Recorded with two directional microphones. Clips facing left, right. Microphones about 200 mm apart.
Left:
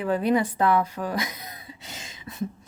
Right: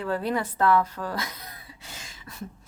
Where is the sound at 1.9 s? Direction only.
20° left (ahead or behind).